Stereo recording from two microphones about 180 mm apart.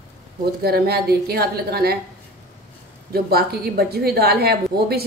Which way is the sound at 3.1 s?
60° right (ahead or behind).